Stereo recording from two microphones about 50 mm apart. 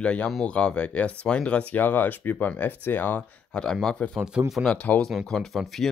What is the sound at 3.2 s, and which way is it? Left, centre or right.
Speech, centre.